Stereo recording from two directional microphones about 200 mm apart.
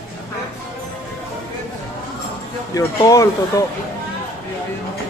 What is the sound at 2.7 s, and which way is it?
Speech, 15° left (ahead or behind).